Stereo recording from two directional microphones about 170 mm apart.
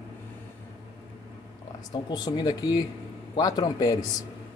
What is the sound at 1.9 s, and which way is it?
Speech, 25° left (ahead or behind).